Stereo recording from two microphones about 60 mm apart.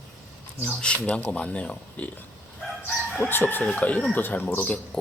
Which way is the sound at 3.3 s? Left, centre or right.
Left.